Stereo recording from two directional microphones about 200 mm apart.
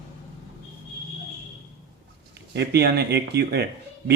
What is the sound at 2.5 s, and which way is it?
Speech, 55° right (ahead or behind).